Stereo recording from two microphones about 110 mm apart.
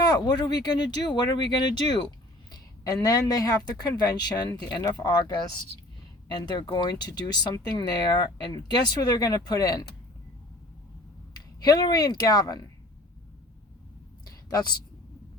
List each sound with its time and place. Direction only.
0.0 s speech: 35° left (ahead or behind)
6.3 s speech: 40° left (ahead or behind)
11.3 s speech: 35° left (ahead or behind)
14.3 s a sound: 40° left (ahead or behind)